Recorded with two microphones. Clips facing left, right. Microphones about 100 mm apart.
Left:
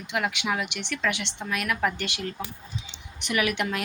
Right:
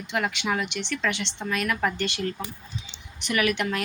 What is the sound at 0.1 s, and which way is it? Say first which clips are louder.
Speech: right 1 dB; 5° left (ahead or behind).